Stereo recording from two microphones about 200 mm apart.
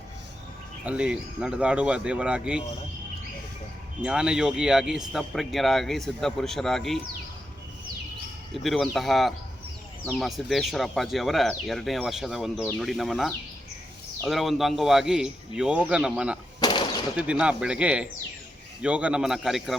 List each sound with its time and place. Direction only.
0.9 s a man's voice: 5° right (ahead or behind)
4.0 s a man's voice: 5° right (ahead or behind)
8.6 s a man's voice: centre (ahead or behind)
16.6 s gunshot: 20° left (ahead or behind)
17.2 s a man's voice: 5° right (ahead or behind)